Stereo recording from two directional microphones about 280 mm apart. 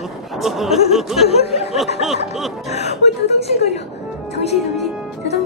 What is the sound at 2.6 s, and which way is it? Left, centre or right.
Chuckle, left.